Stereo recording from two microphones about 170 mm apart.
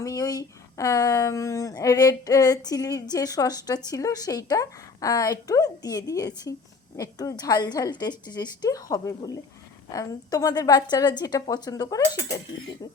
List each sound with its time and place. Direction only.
0.0 s speech: 20° left (ahead or behind)